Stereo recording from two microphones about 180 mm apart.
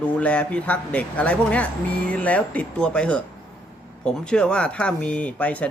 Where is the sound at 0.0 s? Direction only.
5° left (ahead or behind).